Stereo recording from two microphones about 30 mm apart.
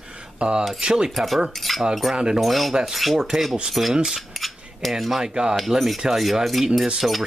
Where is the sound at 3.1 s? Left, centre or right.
Centre.